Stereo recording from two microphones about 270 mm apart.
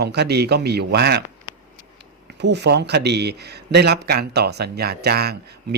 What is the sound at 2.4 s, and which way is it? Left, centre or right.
Speech, right.